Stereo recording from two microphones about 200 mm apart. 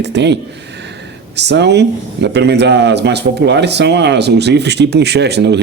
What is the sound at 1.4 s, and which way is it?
Speech, 60° right (ahead or behind).